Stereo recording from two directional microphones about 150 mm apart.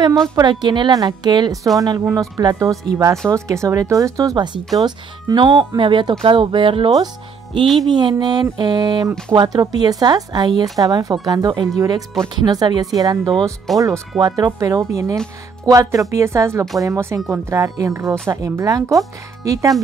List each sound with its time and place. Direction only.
0.4 s speech: 30° right (ahead or behind)
7.6 s speech: centre (ahead or behind)
7.9 s speech: 30° right (ahead or behind)